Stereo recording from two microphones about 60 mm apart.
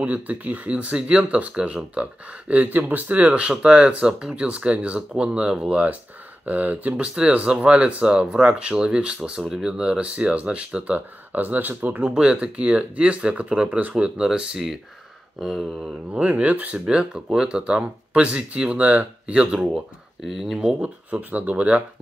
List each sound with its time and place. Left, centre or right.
0.0 s speech: right
12.1 s speech: centre
15.4 s a sound: centre
16.1 s speech: right; by 20.7 s centre
20.8 s speech: right